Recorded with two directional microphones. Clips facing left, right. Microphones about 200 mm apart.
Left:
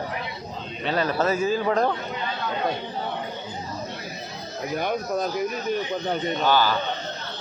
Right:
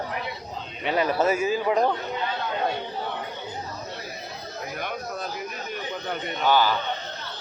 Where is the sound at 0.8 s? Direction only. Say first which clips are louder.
Right 1 dB; 15° right (ahead or behind).